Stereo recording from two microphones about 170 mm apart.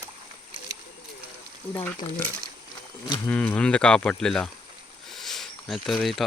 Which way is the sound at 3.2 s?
10° left (ahead or behind).